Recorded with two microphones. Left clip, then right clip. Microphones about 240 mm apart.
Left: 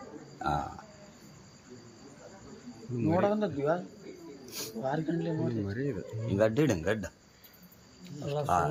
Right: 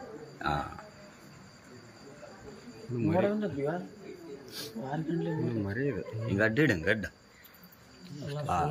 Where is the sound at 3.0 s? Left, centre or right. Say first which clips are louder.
Left 1 dB; centre.